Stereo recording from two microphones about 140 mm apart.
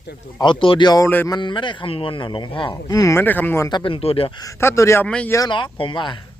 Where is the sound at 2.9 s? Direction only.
25° left (ahead or behind).